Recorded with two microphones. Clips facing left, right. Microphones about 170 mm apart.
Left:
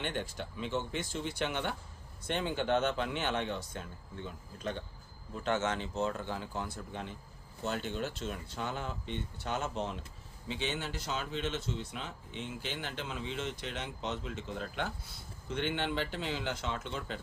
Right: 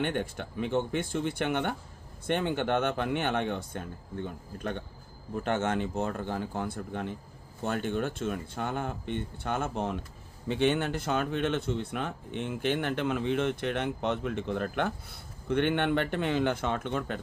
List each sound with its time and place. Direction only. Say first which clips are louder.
0.0 s speech: right 6 dB; 55° right (ahead or behind)